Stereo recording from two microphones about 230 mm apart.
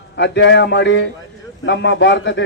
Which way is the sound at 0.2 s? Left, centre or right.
Left.